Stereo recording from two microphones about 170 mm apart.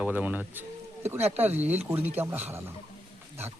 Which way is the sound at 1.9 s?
15° right (ahead or behind).